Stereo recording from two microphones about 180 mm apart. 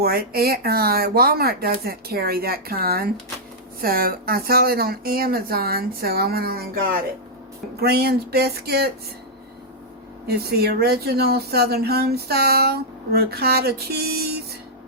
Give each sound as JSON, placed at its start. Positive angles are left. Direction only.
{"t": 0.0, "sound": "speech", "side_deg": -60}
{"t": 10.2, "sound": "speech", "side_deg": -60}